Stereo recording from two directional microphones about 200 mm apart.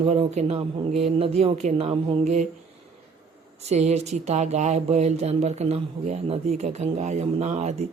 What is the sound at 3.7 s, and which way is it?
Speech, 35° right (ahead or behind).